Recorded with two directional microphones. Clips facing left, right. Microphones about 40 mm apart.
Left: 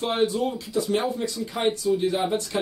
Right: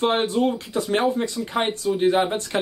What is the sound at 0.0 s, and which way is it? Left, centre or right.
Speech, right.